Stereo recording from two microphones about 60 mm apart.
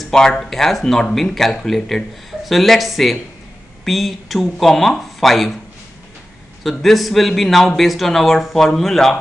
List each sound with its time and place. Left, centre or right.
0.1 s speech: centre
6.6 s speech: centre